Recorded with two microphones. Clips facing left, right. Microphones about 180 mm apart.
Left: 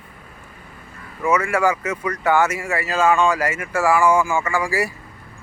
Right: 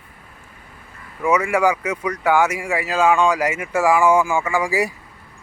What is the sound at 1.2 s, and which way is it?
Speech, 15° right (ahead or behind).